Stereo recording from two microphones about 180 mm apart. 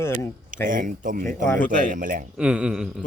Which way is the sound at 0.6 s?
45° right (ahead or behind).